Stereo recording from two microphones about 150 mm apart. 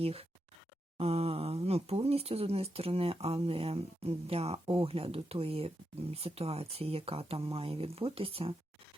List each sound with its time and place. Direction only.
0.0 s speech: 40° right (ahead or behind)